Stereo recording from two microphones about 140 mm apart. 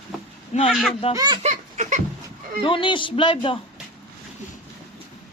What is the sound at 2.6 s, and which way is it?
Speech, 35° left (ahead or behind).